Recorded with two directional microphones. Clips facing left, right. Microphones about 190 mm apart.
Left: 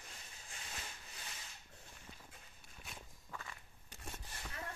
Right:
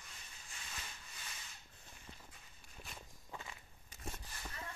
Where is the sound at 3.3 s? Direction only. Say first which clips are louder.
Even; 15° right (ahead or behind).